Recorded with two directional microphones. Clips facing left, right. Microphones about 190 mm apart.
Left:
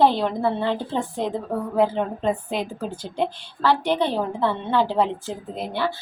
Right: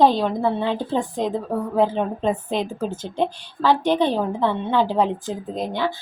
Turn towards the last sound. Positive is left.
turn(degrees=-15)  # may be behind; listen again after turning